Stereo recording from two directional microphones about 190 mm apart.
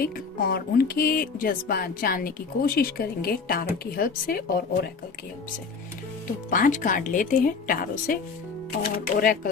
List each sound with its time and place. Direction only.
0.0 s speech: 50° left (ahead or behind)
6.5 s speech: 45° left (ahead or behind)